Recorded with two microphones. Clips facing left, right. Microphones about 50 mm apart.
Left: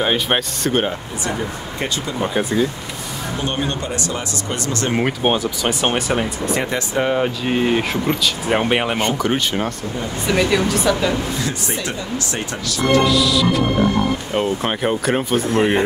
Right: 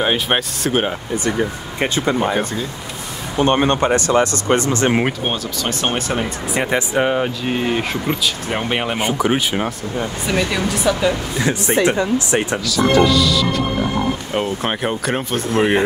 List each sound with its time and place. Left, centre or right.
0.0 s speech: centre
1.8 s speech: right
3.3 s speech: right
4.5 s speech: right
5.2 s speech: centre
6.7 s speech: centre
7.2 s speech: centre
8.9 s speech: centre
11.4 s speech: right
13.0 s speech: centre